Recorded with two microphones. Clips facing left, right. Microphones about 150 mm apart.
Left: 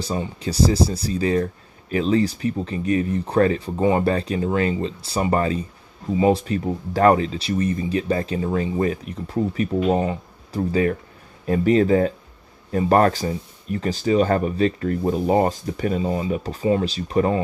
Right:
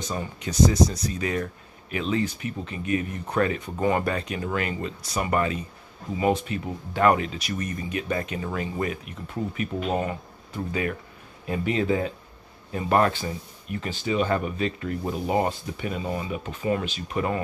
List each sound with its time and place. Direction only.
0.0 s speech: 30° left (ahead or behind)